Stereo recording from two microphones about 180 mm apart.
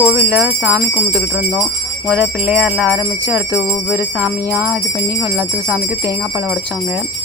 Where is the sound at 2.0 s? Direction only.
10° right (ahead or behind).